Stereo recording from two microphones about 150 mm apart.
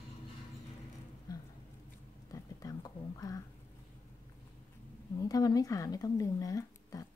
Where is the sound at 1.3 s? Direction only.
25° left (ahead or behind).